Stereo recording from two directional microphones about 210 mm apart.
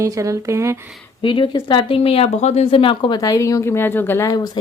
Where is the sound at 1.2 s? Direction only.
25° left (ahead or behind).